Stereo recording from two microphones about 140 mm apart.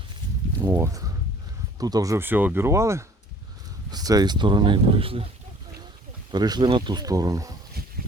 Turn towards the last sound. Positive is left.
turn(degrees=-25)  # may be behind; listen again after turning